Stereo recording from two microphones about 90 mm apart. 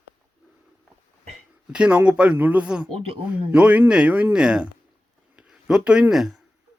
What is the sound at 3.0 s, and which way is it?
Speech, 90° right.